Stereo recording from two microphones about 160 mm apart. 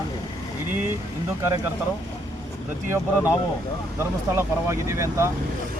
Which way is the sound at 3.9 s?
15° right (ahead or behind).